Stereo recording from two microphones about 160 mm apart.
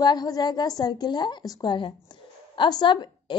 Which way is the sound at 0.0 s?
25° left (ahead or behind).